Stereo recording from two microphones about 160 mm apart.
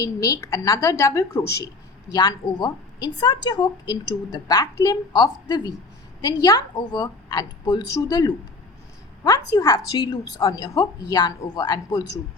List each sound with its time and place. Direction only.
0.0 s a woman's voice: 20° left (ahead or behind)